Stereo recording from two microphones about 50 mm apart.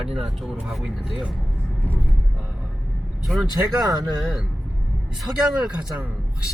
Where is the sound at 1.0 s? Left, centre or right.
Centre.